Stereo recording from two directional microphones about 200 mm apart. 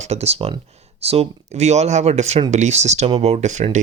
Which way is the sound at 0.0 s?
30° right (ahead or behind).